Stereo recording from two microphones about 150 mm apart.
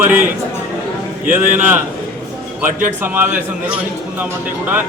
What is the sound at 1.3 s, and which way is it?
A man's voice, 15° right (ahead or behind).